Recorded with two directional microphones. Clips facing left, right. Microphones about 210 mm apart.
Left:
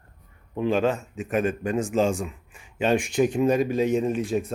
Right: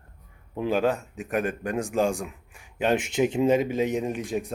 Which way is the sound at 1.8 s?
15° right (ahead or behind).